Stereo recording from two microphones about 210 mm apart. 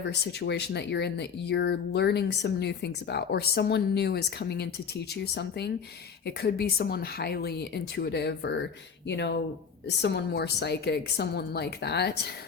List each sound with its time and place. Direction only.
0.0 s speech: 55° left (ahead or behind)